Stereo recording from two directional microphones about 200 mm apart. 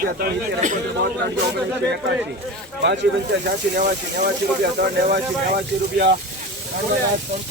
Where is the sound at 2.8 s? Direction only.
60° right (ahead or behind).